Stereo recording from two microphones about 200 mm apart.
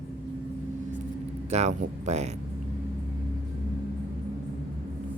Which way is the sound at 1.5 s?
35° right (ahead or behind).